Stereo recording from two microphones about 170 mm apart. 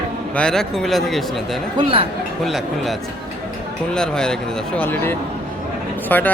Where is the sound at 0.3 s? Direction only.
5° left (ahead or behind).